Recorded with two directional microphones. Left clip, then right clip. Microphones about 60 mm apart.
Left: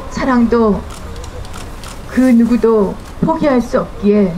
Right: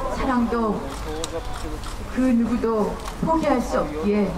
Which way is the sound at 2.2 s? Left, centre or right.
Left.